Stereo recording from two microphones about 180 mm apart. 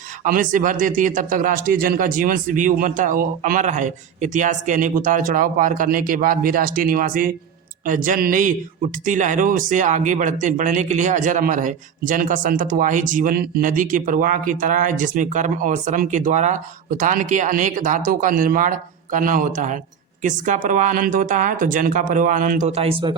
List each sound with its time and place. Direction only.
0.3 s speech: 45° right (ahead or behind); by 23.1 s 30° right (ahead or behind)